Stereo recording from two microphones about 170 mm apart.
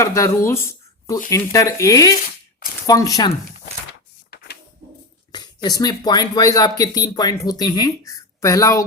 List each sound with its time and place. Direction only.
0.0 s speech: 15° left (ahead or behind)
5.3 s speech: 25° left (ahead or behind)